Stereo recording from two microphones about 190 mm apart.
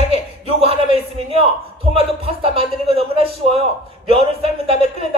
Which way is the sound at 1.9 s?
30° right (ahead or behind).